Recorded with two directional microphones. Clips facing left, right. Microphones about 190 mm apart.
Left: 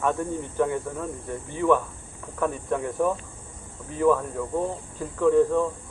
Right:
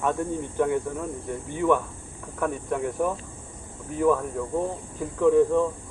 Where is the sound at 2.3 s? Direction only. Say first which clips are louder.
Left 1 dB; 5° right (ahead or behind).